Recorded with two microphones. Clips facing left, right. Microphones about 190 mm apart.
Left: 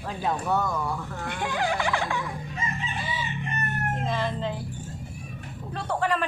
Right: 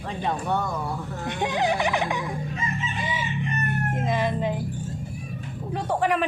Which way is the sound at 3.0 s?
15° right (ahead or behind).